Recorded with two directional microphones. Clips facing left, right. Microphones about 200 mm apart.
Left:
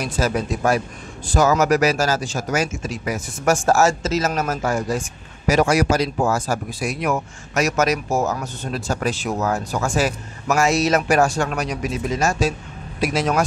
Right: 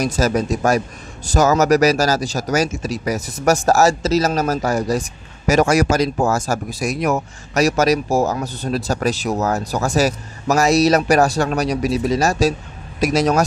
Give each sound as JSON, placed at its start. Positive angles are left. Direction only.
{"t": 0.0, "sound": "speech", "side_deg": -40}